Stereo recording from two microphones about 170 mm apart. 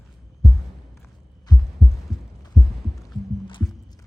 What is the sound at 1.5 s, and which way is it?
Heart sounds, 25° left (ahead or behind).